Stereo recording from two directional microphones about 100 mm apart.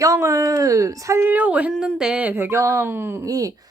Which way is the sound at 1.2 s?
15° right (ahead or behind).